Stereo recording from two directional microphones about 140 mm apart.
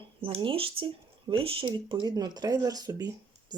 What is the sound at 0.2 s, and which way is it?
Speech, 40° right (ahead or behind).